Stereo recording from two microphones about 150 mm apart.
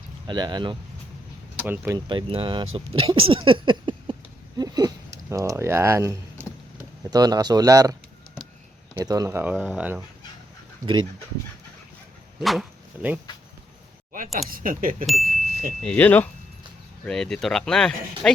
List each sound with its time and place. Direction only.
0.3 s speech: 30° right (ahead or behind)
1.5 s speech: 10° right (ahead or behind)
2.0 s speech: 35° right (ahead or behind)
4.5 s a sound: 25° right (ahead or behind)
7.1 s speech: 25° right (ahead or behind)
9.0 s speech: 25° right (ahead or behind)
12.4 s speech: centre (ahead or behind)
12.9 s speech: 10° right (ahead or behind)
14.5 s speech: 65° right (ahead or behind)
15.0 s speech: centre (ahead or behind)